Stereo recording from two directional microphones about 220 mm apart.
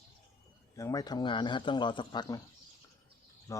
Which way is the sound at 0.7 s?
15° left (ahead or behind).